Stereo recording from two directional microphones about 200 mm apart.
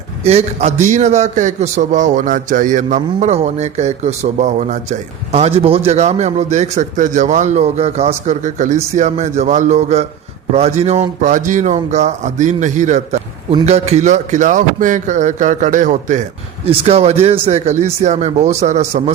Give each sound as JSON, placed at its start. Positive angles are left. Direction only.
{"t": 0.3, "sound": "a man's voice", "side_deg": -35}